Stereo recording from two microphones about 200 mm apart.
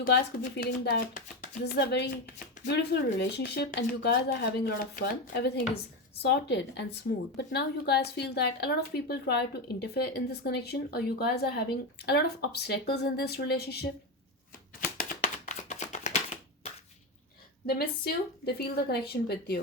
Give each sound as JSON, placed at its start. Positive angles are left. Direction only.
{"t": 0.0, "sound": "a woman's voice", "side_deg": 50}
{"t": 14.9, "sound": "a sound", "side_deg": 40}
{"t": 17.7, "sound": "a woman's voice", "side_deg": 50}